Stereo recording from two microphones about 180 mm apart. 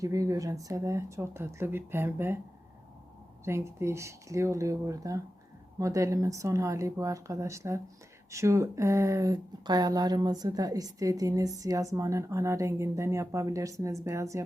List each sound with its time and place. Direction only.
0.0 s speech: 20° right (ahead or behind)
3.4 s speech: 15° right (ahead or behind)